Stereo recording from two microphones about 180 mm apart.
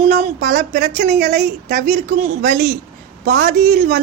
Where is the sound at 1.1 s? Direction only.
45° right (ahead or behind).